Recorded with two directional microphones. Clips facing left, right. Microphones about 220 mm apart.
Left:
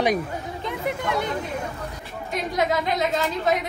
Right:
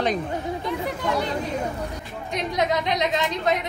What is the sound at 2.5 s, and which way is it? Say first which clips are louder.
A woman's voice: even; 5° left (ahead or behind).